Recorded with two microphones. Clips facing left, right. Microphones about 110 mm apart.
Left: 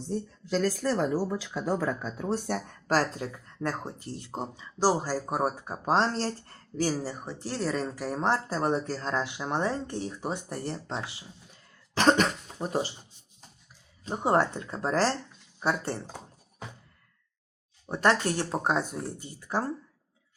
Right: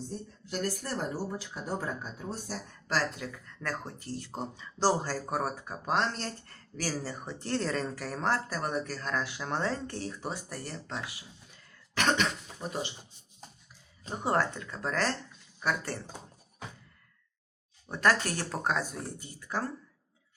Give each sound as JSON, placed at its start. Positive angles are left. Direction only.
{"t": 0.1, "sound": "speech", "side_deg": 90}
{"t": 2.8, "sound": "speech", "side_deg": 45}
{"t": 3.3, "sound": "speech", "side_deg": 25}
{"t": 7.0, "sound": "speech", "side_deg": 10}
{"t": 11.9, "sound": "cough", "side_deg": 40}
{"t": 14.1, "sound": "speech", "side_deg": 25}
{"t": 17.8, "sound": "speech", "side_deg": 25}